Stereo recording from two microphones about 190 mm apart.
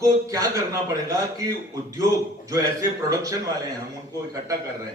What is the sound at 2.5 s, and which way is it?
Speech, 20° right (ahead or behind).